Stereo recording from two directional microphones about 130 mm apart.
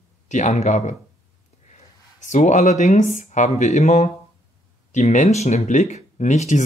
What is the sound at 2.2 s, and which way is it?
Speech, 70° left (ahead or behind).